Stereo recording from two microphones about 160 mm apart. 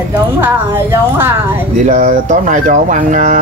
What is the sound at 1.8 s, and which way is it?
Speech, 55° right (ahead or behind).